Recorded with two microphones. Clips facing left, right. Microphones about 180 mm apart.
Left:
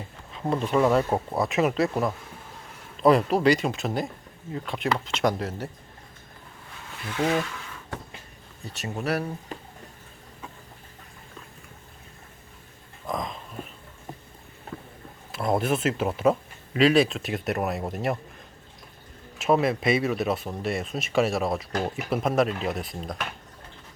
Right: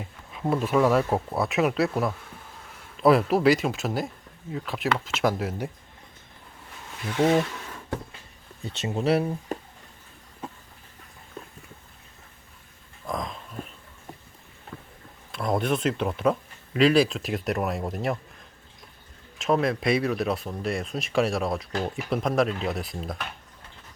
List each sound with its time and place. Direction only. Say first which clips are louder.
0.4 s speech: even; 5° right (ahead or behind)
7.2 s speech: right 4 dB; 20° right (ahead or behind)
8.6 s speech: right 5 dB; 25° right (ahead or behind)
13.1 s dog: left 1 dB; centre (ahead or behind)
15.3 s speech: left 1 dB; 5° left (ahead or behind)
19.4 s speech: left 1 dB; 5° left (ahead or behind)